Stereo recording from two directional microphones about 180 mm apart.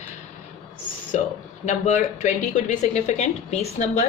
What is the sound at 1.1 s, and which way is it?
A woman's voice, 40° left (ahead or behind).